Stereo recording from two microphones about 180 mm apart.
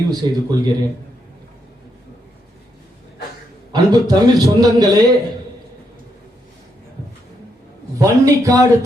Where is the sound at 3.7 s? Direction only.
20° right (ahead or behind).